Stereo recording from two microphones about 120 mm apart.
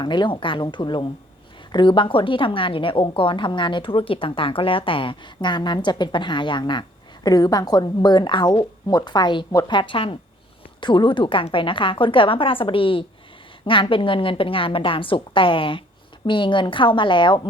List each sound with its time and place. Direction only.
0.0 s a woman's voice: 40° left (ahead or behind)
9.5 s a woman's voice: 30° left (ahead or behind)
9.7 s a woman's voice: 45° left (ahead or behind)